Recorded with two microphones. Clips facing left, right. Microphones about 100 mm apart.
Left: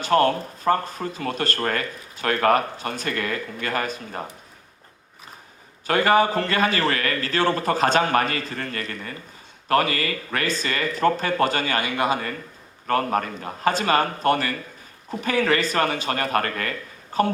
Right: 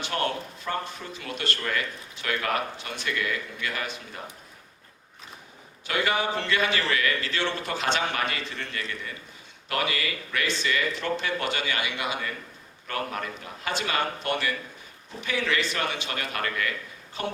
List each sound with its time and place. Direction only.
0.0 s speech: 45° left (ahead or behind)
5.9 s speech: 45° left (ahead or behind)